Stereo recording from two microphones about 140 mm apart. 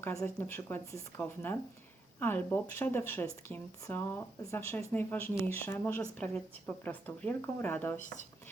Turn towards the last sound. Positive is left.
turn(degrees=15)  # may be behind; listen again after turning